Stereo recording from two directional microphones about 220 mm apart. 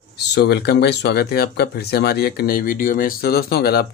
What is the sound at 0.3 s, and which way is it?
Speech, 45° left (ahead or behind).